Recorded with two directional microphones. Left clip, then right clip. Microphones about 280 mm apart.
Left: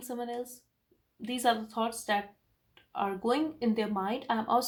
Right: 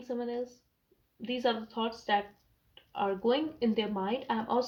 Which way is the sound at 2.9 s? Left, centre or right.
Left.